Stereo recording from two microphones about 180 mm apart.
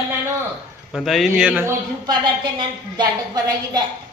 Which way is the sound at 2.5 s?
25° right (ahead or behind).